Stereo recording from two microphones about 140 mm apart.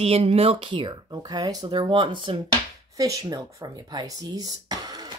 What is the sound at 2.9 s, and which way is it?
Speech, 25° right (ahead or behind).